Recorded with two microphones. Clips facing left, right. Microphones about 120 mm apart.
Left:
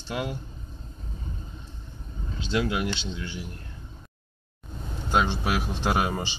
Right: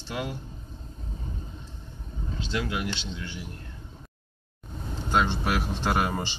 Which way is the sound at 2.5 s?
20° left (ahead or behind).